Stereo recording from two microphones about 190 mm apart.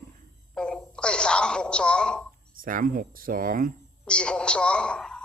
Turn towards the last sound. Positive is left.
turn(degrees=5)  # may be behind; listen again after turning